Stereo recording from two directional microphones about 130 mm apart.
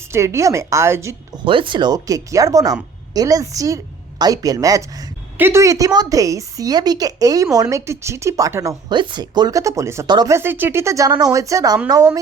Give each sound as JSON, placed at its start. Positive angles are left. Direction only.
{"t": 0.1, "sound": "a woman's voice", "side_deg": -20}
{"t": 1.5, "sound": "a woman's voice", "side_deg": -40}
{"t": 8.9, "sound": "a woman's voice", "side_deg": -35}
{"t": 10.1, "sound": "speech", "side_deg": -35}
{"t": 10.3, "sound": "a woman's voice", "side_deg": -15}